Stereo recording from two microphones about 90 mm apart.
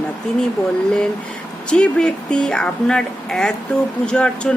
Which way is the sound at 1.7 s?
10° left (ahead or behind).